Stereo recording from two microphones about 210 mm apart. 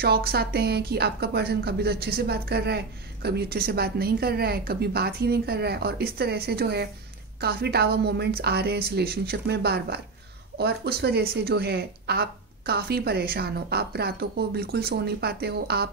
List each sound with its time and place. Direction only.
0.0 s speech: 45° right (ahead or behind)